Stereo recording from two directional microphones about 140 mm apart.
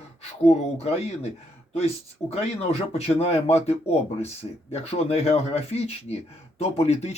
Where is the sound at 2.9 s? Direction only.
50° left (ahead or behind).